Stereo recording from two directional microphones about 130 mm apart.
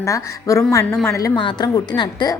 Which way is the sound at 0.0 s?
20° left (ahead or behind).